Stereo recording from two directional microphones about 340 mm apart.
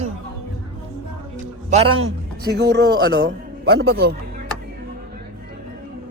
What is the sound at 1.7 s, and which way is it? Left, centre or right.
Speech, centre.